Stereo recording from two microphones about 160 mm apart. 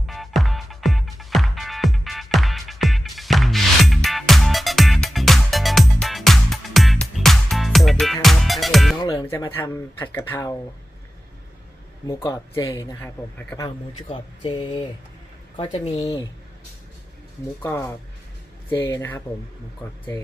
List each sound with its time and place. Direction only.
0.1 s music: centre (ahead or behind)
9.0 s music: 25° left (ahead or behind)
9.4 s speech: 20° left (ahead or behind)
12.0 s speech: 20° left (ahead or behind)
14.1 s speech: 30° left (ahead or behind)
17.6 s speech: 15° left (ahead or behind)